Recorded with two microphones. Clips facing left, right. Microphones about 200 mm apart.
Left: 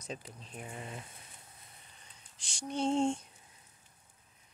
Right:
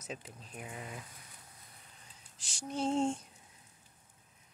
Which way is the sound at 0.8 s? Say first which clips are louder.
Left 1 dB; 25° left (ahead or behind).